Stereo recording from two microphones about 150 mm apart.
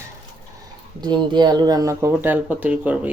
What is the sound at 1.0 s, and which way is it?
Speech, 30° right (ahead or behind).